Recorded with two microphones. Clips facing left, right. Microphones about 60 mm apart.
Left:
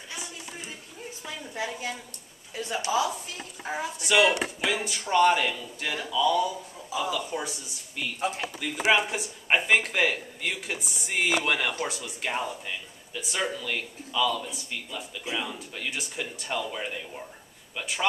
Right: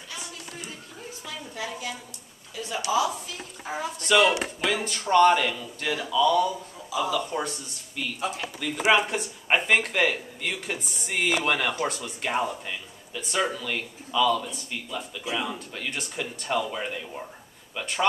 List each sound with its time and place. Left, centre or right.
1.2 s a woman's voice: left
3.6 s speech: centre
12.3 s speech: centre
13.1 s speech: centre
15.7 s speech: centre